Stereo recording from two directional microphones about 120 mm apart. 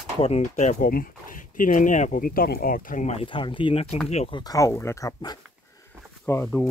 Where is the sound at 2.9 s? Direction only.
75° left (ahead or behind).